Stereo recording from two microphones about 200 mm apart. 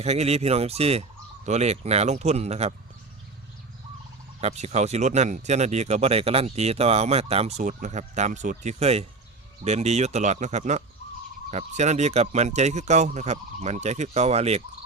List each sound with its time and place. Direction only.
0.0 s speech: 30° right (ahead or behind)
4.4 s speech: 35° right (ahead or behind)